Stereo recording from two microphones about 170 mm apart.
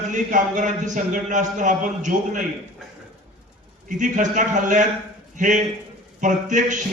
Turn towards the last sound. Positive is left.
turn(degrees=-50)  # may be behind; listen again after turning